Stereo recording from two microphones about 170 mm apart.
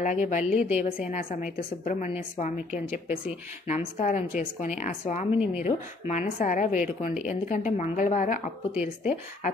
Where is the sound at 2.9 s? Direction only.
10° right (ahead or behind).